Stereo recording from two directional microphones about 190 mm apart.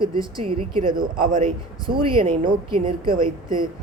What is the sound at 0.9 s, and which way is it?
Speech, 50° right (ahead or behind).